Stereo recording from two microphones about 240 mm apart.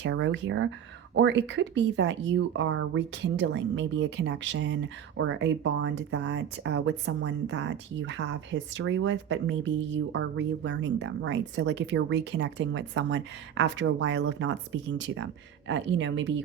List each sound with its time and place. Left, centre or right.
0.0 s speech: right